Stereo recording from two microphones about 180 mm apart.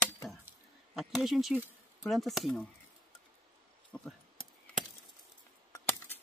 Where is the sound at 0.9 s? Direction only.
Centre (ahead or behind).